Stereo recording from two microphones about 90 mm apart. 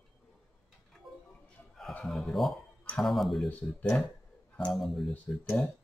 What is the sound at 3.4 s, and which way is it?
Speech, 15° left (ahead or behind).